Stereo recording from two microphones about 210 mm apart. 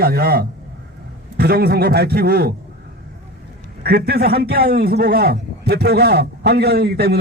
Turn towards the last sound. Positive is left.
turn(degrees=-50)  # may be behind; listen again after turning